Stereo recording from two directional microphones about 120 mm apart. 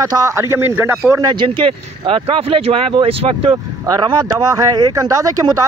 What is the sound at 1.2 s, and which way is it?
Speech, 40° right (ahead or behind).